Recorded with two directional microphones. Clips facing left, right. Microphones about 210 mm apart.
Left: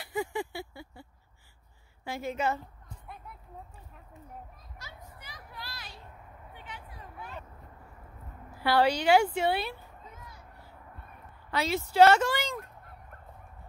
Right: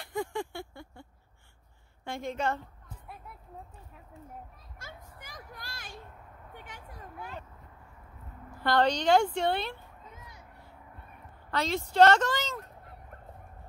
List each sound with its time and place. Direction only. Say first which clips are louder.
0.0 s a sound: left 1 dB; 5° left (ahead or behind)
2.0 s a woman's voice: left 1 dB; 5° left (ahead or behind)
4.7 s children playing: right 2 dB; 50° right (ahead or behind)
6.5 s a sound: even; 45° right (ahead or behind)
8.5 s a woman's voice: left 1 dB; 5° left (ahead or behind)
11.5 s a woman's voice: left 1 dB; 5° left (ahead or behind)